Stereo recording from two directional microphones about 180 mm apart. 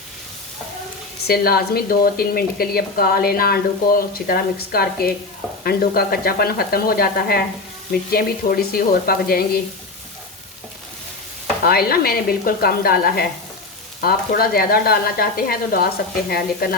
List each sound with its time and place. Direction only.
1.3 s a woman's voice: 55° left (ahead or behind)
11.6 s a woman's voice: 55° left (ahead or behind)